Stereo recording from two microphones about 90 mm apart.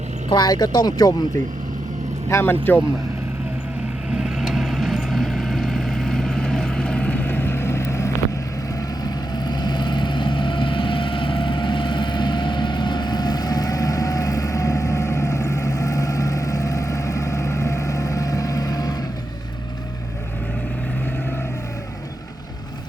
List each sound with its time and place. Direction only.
0.3 s speech: 50° left (ahead or behind)
2.3 s speech: 25° left (ahead or behind)
4.1 s vehicle: 10° right (ahead or behind); by 8.1 s 30° left (ahead or behind)
9.0 s vehicle: 50° left (ahead or behind)